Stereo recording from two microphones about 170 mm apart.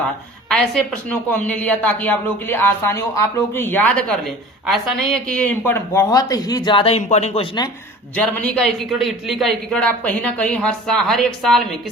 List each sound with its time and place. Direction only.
0.4 s a woman's voice: 5° left (ahead or behind); by 7.4 s 40° left (ahead or behind)
8.1 s a man's voice: 5° left (ahead or behind)